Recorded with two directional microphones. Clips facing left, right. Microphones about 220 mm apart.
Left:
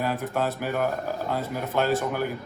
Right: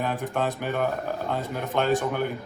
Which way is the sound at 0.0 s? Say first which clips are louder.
Even; centre (ahead or behind).